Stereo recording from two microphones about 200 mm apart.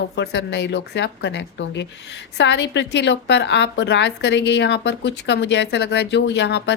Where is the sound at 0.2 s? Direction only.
60° left (ahead or behind).